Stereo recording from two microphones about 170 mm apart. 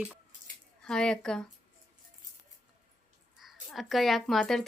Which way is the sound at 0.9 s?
5° left (ahead or behind).